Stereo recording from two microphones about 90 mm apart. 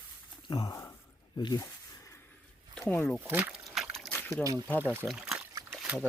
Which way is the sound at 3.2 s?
15° right (ahead or behind).